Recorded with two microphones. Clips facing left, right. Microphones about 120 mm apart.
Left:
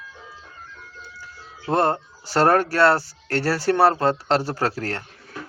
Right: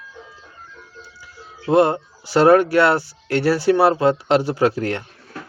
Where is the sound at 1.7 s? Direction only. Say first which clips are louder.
Right 5 dB; 10° right (ahead or behind).